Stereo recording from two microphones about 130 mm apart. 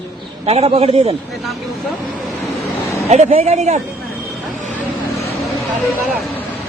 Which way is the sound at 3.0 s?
60° right (ahead or behind).